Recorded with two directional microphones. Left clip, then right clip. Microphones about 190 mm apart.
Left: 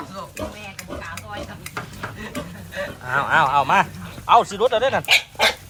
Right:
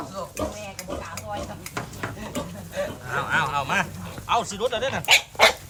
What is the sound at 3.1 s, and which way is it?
Speech, centre (ahead or behind).